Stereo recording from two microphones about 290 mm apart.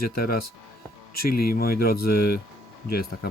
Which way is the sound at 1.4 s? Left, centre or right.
Left.